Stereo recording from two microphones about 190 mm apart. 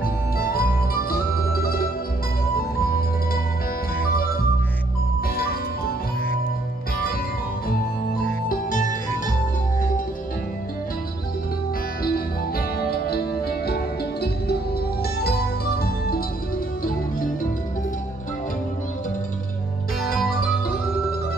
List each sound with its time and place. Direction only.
0.0 s music: 50° left (ahead or behind)
4.0 s music: 50° left (ahead or behind)
8.5 s music: 45° left (ahead or behind)
12.0 s music: 50° left (ahead or behind)